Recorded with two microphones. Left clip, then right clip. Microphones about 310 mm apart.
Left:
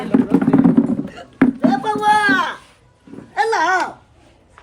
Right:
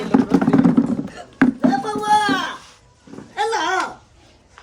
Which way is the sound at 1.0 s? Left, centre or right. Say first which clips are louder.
Left 1 dB; centre.